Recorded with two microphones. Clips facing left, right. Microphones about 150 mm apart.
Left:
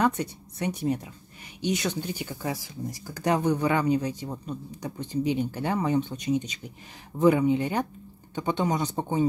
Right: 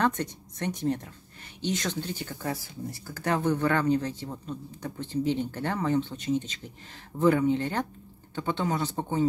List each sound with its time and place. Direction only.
0.0 s speech: 10° left (ahead or behind)